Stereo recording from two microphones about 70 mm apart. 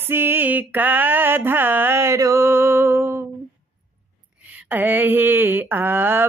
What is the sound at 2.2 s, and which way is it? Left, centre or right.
Music, right.